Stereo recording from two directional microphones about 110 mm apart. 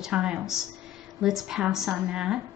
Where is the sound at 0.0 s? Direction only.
10° right (ahead or behind).